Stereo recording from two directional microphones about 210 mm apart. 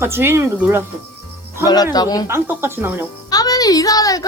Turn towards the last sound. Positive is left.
turn(degrees=15)  # may be behind; listen again after turning